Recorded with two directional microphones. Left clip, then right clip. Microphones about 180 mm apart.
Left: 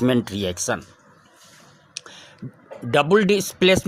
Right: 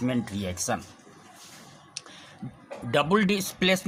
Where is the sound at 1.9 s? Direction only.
35° left (ahead or behind).